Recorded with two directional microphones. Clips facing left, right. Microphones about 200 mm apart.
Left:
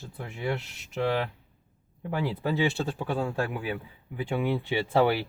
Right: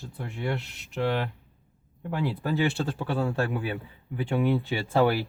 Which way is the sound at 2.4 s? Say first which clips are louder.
Even; 15° left (ahead or behind).